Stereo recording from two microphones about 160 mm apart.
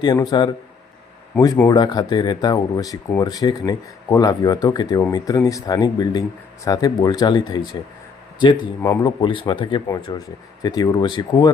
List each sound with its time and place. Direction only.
0.0 s speech: 25° left (ahead or behind)
1.5 s speech: 20° left (ahead or behind)
8.8 s speech: 20° left (ahead or behind)
9.2 s speech: 30° left (ahead or behind)